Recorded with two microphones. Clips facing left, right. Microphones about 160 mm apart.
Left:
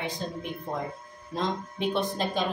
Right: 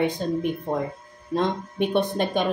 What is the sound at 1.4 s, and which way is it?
Speech, 60° right (ahead or behind).